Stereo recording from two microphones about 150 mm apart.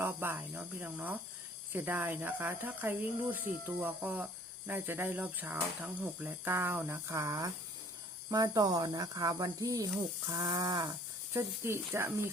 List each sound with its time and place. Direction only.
0.0 s speech: 15° right (ahead or behind)